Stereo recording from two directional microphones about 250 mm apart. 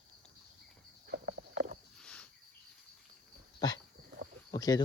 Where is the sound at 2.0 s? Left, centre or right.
Centre.